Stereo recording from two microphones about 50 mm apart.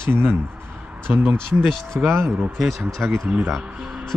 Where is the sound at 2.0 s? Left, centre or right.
Right.